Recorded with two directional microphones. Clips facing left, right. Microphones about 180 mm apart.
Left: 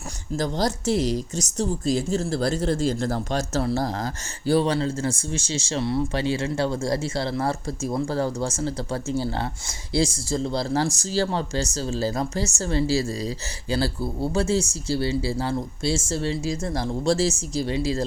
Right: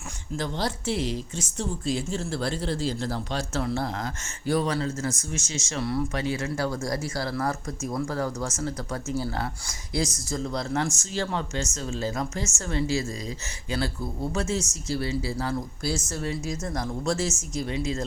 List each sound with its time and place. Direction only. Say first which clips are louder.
0.3 s speech: left 5 dB; 40° left (ahead or behind)